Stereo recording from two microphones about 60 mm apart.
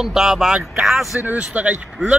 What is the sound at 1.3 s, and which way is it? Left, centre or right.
Speech, right.